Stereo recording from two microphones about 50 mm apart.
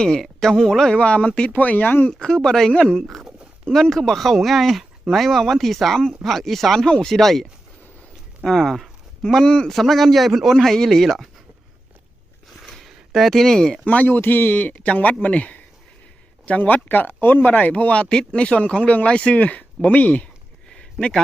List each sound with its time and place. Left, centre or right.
0.0 s speech: centre
0.9 s speech: left
1.5 s speech: left
2.0 s speech: centre
8.4 s speech: centre
9.2 s speech: left
9.6 s speech: centre
12.6 s a sound: centre
13.8 s speech: left
18.1 s speech: centre
20.7 s a sound: centre